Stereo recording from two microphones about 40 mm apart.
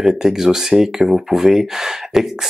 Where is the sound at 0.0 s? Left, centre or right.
Centre.